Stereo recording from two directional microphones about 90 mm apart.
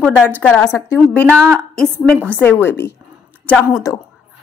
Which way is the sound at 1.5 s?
10° left (ahead or behind).